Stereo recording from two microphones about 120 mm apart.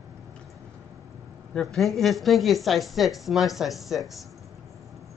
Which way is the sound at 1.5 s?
Centre (ahead or behind).